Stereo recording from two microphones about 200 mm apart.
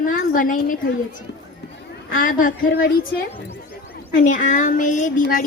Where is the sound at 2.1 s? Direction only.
45° left (ahead or behind).